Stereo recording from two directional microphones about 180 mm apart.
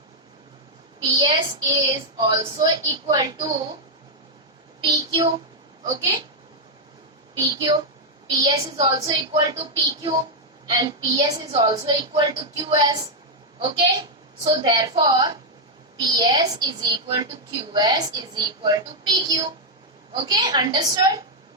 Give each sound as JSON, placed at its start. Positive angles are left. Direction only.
{"t": 1.0, "sound": "a woman's voice", "side_deg": -25}
{"t": 4.9, "sound": "a woman's voice", "side_deg": -20}
{"t": 7.3, "sound": "a woman's voice", "side_deg": -25}